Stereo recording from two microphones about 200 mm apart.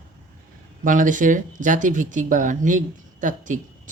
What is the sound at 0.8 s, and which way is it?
Speech, 40° right (ahead or behind).